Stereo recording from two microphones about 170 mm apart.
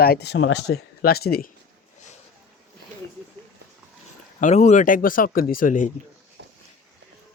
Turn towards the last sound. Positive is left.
turn(degrees=50)  # may be behind; listen again after turning